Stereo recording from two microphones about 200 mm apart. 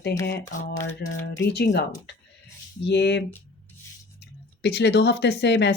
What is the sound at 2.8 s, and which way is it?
Speech, 60° left (ahead or behind).